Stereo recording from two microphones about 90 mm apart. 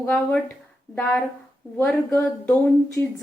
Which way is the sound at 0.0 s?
25° left (ahead or behind).